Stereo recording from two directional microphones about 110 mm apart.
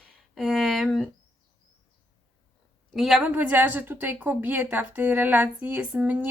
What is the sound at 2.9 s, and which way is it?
Speech, centre (ahead or behind).